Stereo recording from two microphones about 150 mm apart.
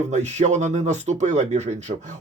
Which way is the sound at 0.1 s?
50° right (ahead or behind).